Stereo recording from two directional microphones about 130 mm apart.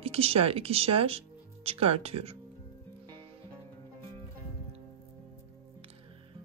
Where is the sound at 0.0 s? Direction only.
50° right (ahead or behind).